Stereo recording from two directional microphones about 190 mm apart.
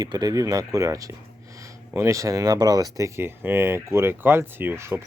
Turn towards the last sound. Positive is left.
turn(degrees=-15)  # may be behind; listen again after turning